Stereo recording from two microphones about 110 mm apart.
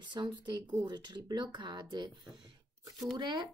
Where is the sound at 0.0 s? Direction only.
40° right (ahead or behind).